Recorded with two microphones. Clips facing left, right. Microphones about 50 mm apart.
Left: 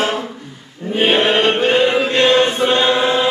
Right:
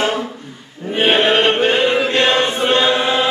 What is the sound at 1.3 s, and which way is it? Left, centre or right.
Music, centre.